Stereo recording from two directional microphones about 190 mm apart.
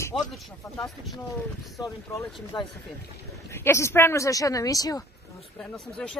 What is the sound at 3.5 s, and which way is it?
Speech, 15° left (ahead or behind).